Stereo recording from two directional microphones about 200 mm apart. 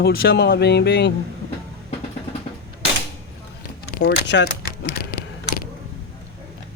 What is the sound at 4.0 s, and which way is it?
Speech, 60° left (ahead or behind).